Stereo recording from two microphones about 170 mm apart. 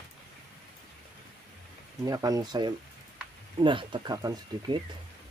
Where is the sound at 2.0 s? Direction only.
20° right (ahead or behind).